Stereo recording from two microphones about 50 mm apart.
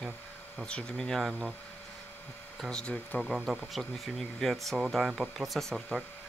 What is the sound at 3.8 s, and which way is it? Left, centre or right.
Speech, centre.